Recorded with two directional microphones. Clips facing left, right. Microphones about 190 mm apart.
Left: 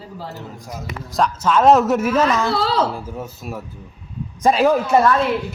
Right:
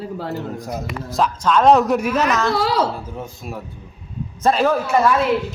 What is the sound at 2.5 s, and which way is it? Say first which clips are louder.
Speech: right 1 dB; 15° right (ahead or behind).